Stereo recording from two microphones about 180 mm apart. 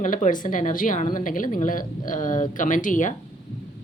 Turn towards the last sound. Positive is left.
turn(degrees=45)  # may be behind; listen again after turning